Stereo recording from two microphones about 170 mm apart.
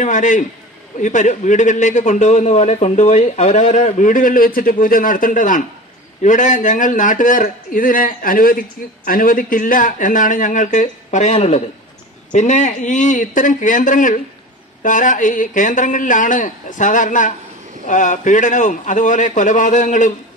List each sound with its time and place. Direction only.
0.0 s a man's voice: 45° left (ahead or behind)